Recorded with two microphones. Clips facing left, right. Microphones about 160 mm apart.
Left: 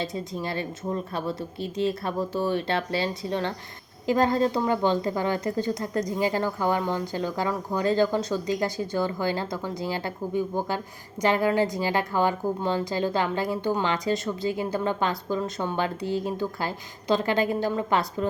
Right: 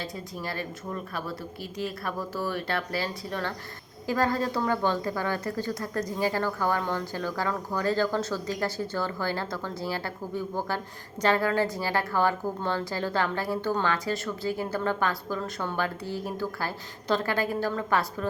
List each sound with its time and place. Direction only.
0.0 s a woman's voice: 25° left (ahead or behind)